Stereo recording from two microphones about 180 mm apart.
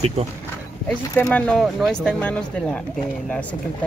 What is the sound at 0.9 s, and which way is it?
Speech, 10° left (ahead or behind).